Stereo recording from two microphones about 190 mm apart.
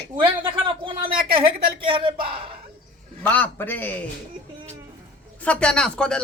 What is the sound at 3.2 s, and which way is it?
Speech, 10° left (ahead or behind).